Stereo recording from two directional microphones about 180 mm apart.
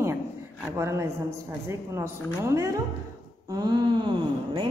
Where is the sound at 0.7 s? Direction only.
15° right (ahead or behind).